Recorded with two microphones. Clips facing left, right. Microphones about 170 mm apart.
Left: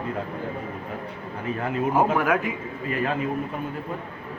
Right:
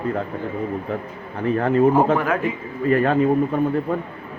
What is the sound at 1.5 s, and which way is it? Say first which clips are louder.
Speech: right 10 dB; 55° right (ahead or behind).